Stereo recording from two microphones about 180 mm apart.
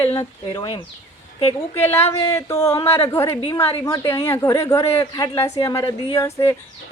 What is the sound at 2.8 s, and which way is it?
Speech, 30° left (ahead or behind).